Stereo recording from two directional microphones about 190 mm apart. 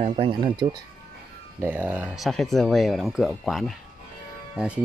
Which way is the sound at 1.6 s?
10° right (ahead or behind).